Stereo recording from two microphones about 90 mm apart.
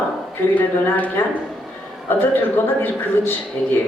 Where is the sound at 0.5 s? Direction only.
20° left (ahead or behind).